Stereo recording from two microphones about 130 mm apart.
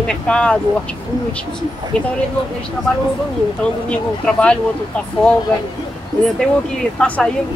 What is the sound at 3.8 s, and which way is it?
Speech, 10° left (ahead or behind).